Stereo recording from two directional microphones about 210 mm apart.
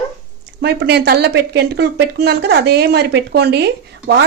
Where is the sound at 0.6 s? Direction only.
50° right (ahead or behind).